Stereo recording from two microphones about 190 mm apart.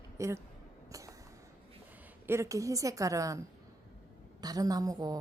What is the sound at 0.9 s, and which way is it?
Vehicle, 15° right (ahead or behind).